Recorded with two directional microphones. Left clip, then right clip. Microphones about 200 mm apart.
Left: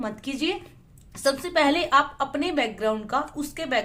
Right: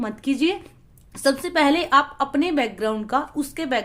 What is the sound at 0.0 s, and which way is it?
A woman's voice, 35° right (ahead or behind).